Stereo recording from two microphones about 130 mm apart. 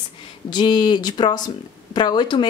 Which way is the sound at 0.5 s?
35° left (ahead or behind).